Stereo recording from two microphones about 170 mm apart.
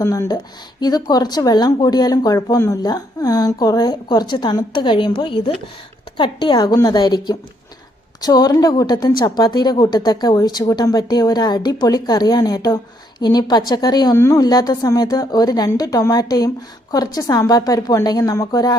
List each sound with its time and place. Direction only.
0.0 s a woman's voice: 20° left (ahead or behind)